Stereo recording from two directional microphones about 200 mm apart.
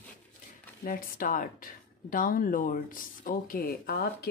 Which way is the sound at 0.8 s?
45° left (ahead or behind).